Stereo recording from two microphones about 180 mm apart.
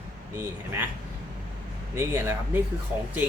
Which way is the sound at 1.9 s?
15° right (ahead or behind).